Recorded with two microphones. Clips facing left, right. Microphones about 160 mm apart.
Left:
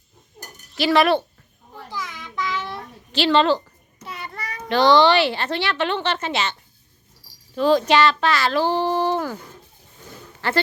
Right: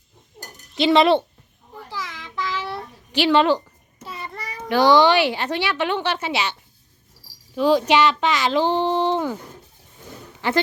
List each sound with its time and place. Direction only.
0.8 s speech: 20° right (ahead or behind)
1.9 s babbling: centre (ahead or behind)
4.0 s child singing: centre (ahead or behind)
4.7 s speech: 10° right (ahead or behind)
10.4 s speech: 15° right (ahead or behind)